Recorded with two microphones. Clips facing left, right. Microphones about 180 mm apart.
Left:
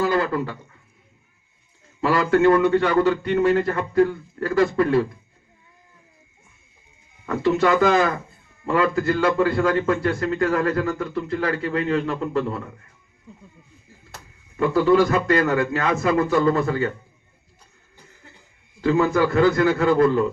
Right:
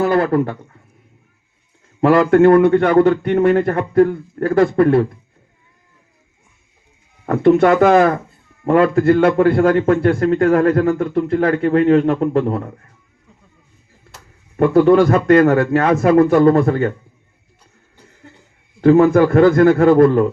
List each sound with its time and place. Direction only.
0.0 s a sound: 55° right (ahead or behind)
2.0 s a man's voice: 55° right (ahead or behind)
7.3 s a man's voice: 50° right (ahead or behind)
14.5 s a man's voice: 55° right (ahead or behind)
18.8 s a man's voice: 55° right (ahead or behind)